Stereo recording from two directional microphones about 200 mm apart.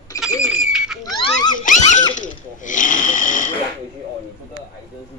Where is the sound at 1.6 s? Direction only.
40° left (ahead or behind).